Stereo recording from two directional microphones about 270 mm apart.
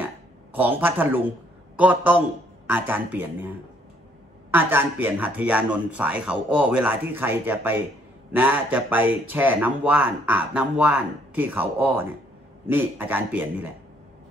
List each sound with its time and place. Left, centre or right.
0.0 s a sound: centre
1.8 s speech: centre
4.5 s speech: centre